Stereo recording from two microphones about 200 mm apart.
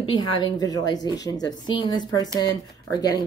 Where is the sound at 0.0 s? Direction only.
25° left (ahead or behind).